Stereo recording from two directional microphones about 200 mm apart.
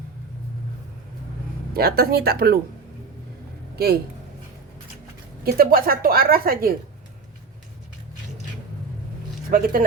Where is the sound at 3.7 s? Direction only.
50° right (ahead or behind).